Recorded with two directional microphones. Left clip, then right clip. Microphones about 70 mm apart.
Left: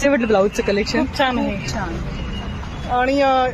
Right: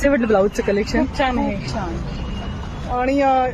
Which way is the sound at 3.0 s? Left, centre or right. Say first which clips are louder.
Even; centre.